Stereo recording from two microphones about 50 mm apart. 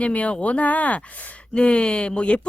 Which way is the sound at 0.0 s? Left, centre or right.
Left.